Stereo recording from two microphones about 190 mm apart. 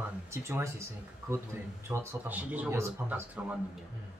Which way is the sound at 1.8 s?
10° right (ahead or behind).